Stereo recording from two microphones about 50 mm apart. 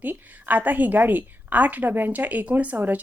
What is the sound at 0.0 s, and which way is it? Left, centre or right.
A woman's voice, right.